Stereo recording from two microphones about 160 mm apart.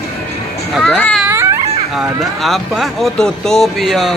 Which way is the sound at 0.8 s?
Centre (ahead or behind).